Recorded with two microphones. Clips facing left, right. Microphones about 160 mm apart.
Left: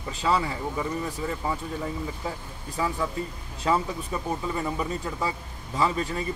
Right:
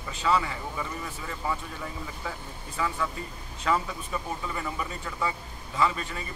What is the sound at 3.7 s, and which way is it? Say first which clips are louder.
Speech: left 3 dB; 30° left (ahead or behind).